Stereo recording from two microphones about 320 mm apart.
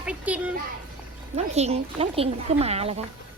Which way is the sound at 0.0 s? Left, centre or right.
Centre.